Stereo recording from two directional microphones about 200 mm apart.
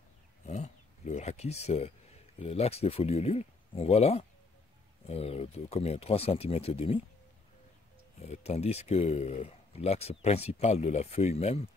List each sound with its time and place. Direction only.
0.5 s speech: 35° left (ahead or behind)
8.2 s speech: 30° left (ahead or behind)